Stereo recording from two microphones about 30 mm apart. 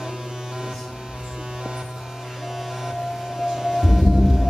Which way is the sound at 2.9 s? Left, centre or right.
Centre.